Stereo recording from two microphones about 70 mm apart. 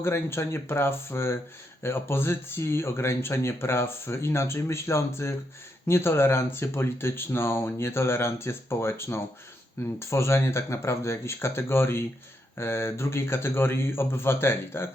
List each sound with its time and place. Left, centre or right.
0.0 s speech: left